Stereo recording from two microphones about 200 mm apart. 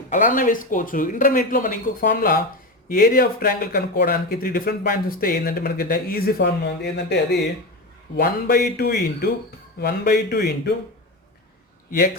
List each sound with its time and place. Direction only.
0.1 s speech: 40° left (ahead or behind)